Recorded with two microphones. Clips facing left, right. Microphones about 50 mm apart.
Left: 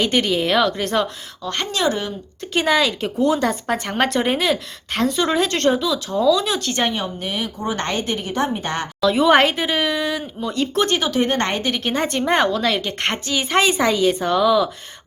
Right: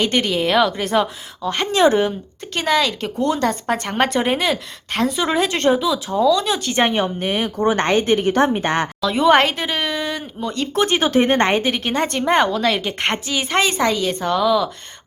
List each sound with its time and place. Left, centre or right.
0.0 s a woman's voice: centre
1.7 s speech: right
2.5 s a woman's voice: centre
6.9 s speech: right
7.8 s speech: right
9.0 s a woman's voice: centre
11.0 s speech: right
11.3 s a woman's voice: right; by 14.7 s centre